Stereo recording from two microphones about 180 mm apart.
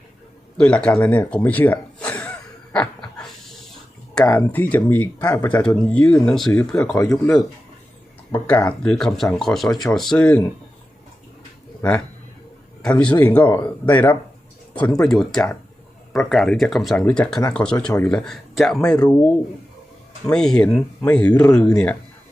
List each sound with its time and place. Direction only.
0.5 s speech: 5° left (ahead or behind)
1.5 s a sound: 10° left (ahead or behind)
2.7 s dog: 5° left (ahead or behind)
4.4 s speech: 10° left (ahead or behind)
11.8 s speech: 10° left (ahead or behind)
13.4 s speech: 25° left (ahead or behind)
13.8 s speech: 10° left (ahead or behind)
20.3 s speech: 5° left (ahead or behind)